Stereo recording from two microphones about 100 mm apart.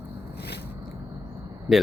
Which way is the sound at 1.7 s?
5° right (ahead or behind).